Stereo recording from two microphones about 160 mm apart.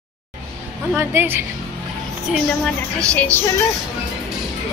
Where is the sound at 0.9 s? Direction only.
15° right (ahead or behind).